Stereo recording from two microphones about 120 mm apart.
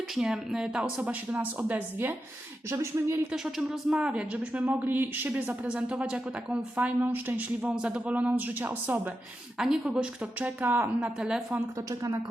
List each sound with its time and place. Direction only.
0.1 s speech: 5° right (ahead or behind); by 3.2 s 20° right (ahead or behind)
3.3 s speech: 5° right (ahead or behind)
9.6 s speech: 5° right (ahead or behind)